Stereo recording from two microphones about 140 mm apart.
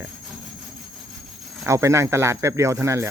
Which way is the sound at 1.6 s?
20° right (ahead or behind).